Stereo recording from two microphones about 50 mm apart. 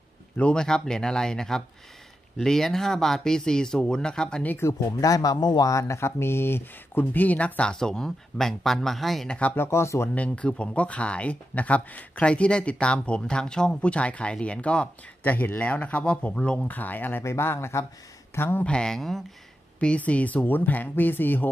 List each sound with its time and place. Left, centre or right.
0.4 s speech: centre
4.6 s speech: left
5.7 s speech: left
7.1 s speech: left; by 9.3 s centre
9.6 s speech: left
10.1 s speech: left
15.2 s speech: left
15.6 s speech: left
17.2 s speech: left
18.6 s speech: centre
19.8 s speech: left